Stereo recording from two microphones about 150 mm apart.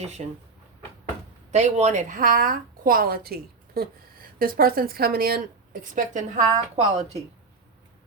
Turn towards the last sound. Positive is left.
turn(degrees=-45)  # may be behind; listen again after turning